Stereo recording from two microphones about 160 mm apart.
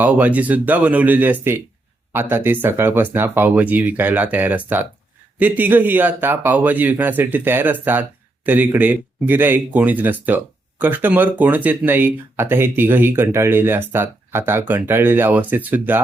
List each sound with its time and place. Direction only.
0.0 s speech: 10° right (ahead or behind)